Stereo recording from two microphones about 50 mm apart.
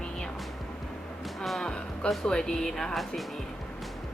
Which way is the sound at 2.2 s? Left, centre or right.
Centre.